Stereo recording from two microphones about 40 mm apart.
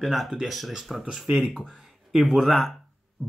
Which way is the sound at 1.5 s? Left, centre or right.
Centre.